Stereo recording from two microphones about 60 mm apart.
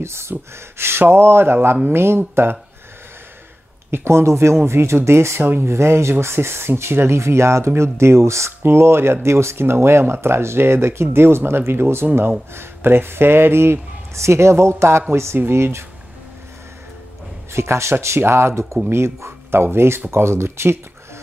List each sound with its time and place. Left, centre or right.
0.0 s speech: right
3.9 s speech: right
17.5 s speech: right